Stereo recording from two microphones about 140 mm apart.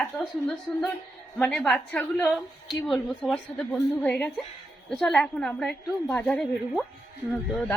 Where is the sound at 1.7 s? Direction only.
10° left (ahead or behind).